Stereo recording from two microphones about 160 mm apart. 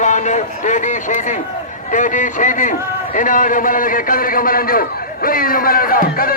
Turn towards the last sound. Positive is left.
turn(degrees=65)  # may be behind; listen again after turning